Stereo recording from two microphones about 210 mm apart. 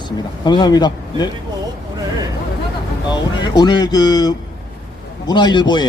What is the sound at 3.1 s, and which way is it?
Speech, 20° left (ahead or behind).